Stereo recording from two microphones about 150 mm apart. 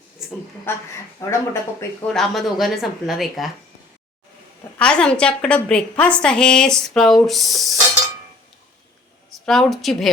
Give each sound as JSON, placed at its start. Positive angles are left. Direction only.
{"t": 0.2, "sound": "a sound", "side_deg": 0}
{"t": 0.7, "sound": "speech", "side_deg": 15}
{"t": 2.0, "sound": "a woman's voice", "side_deg": 0}
{"t": 4.8, "sound": "a woman's voice", "side_deg": 5}
{"t": 9.5, "sound": "a woman's voice", "side_deg": 0}